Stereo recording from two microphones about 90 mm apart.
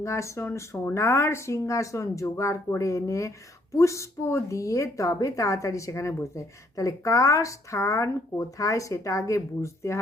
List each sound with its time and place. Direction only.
0.0 s speech: 35° left (ahead or behind)